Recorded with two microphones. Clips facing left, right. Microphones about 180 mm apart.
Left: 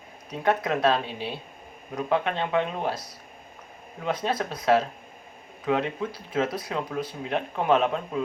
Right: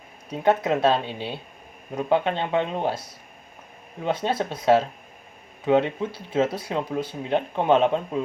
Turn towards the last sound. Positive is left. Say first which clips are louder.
# right 3 dB
turn(degrees=-30)  # may be behind; listen again after turning